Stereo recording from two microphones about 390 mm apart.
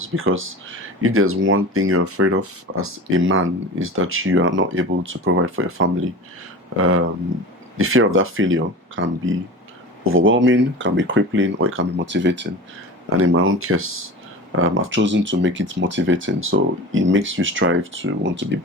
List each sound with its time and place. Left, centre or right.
0.0 s speech: right